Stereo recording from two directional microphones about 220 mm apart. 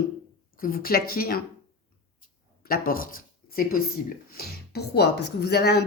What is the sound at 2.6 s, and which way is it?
Speech, 40° left (ahead or behind).